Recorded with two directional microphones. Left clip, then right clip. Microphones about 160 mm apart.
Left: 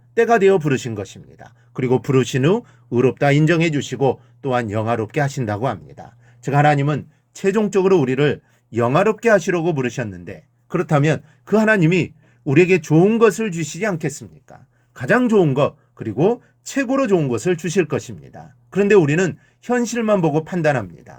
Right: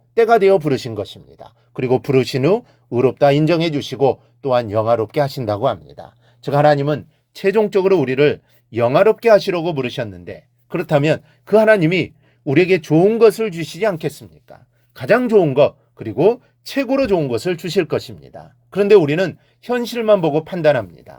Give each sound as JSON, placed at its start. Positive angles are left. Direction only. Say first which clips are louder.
{"t": 0.1, "sound": "speech", "louder": "right 2 dB", "side_deg": -25}
{"t": 6.7, "sound": "a man's voice", "louder": "right 3 dB", "side_deg": -30}
{"t": 10.8, "sound": "a man's voice", "louder": "right 2 dB", "side_deg": -45}